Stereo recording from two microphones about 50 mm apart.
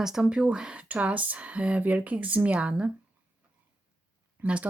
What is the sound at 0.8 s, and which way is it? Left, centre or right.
Speech, right.